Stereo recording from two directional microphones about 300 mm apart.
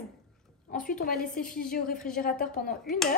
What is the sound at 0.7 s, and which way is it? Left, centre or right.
Speech, left.